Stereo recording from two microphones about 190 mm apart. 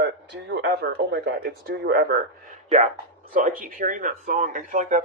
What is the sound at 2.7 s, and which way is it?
Speech, 40° right (ahead or behind).